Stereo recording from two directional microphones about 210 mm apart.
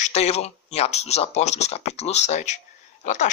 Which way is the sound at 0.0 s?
30° left (ahead or behind).